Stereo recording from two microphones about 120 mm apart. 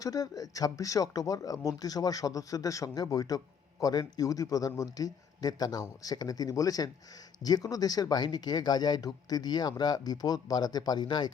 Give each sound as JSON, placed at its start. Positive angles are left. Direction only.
{"t": 0.0, "sound": "speech", "side_deg": 30}